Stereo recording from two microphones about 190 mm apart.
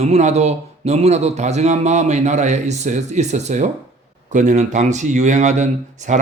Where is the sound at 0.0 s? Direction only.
35° right (ahead or behind).